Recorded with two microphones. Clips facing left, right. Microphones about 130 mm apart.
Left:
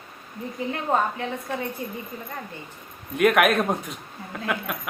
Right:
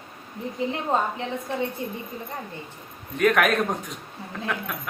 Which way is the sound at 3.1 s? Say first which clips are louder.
Left 2 dB; 5° left (ahead or behind).